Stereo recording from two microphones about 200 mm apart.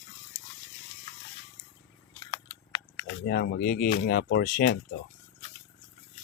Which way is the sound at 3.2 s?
55° left (ahead or behind).